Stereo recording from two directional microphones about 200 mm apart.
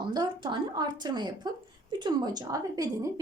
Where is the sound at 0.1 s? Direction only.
25° right (ahead or behind).